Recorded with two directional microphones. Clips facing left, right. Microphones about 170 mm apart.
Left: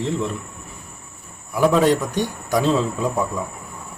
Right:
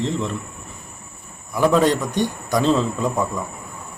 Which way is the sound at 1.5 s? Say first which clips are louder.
Even; 5° left (ahead or behind).